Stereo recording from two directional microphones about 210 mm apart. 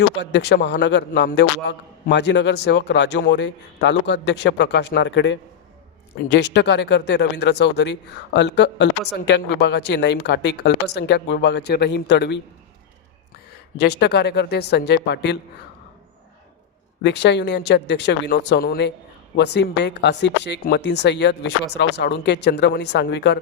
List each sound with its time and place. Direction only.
0.2 s speech: 55° left (ahead or behind)
13.7 s speech: 50° left (ahead or behind)
17.0 s speech: 55° left (ahead or behind)